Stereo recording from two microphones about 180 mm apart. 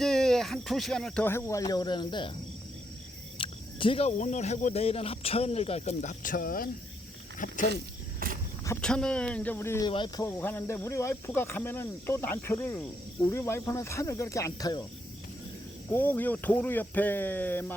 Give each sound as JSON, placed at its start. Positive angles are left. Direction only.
{"t": 0.0, "sound": "speech", "side_deg": 0}
{"t": 3.3, "sound": "speech", "side_deg": 30}
{"t": 7.3, "sound": "a sound", "side_deg": 45}
{"t": 8.2, "sound": "cricket", "side_deg": -55}
{"t": 8.8, "sound": "speech", "side_deg": 5}
{"t": 9.9, "sound": "speech", "side_deg": 25}
{"t": 10.2, "sound": "speech", "side_deg": 10}
{"t": 15.9, "sound": "speech", "side_deg": 10}